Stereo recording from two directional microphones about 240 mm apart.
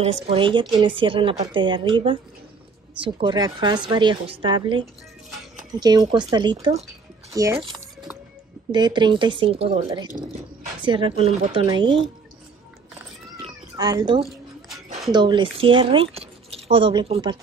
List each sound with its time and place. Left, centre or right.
0.0 s a woman's voice: right
8.7 s a woman's voice: centre
13.4 s cat: centre
14.9 s speech: centre